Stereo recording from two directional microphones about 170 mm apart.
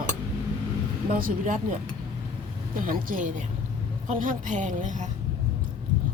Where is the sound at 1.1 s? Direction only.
55° right (ahead or behind).